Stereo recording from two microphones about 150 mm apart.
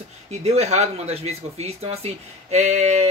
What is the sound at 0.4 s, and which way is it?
Speech, 45° right (ahead or behind).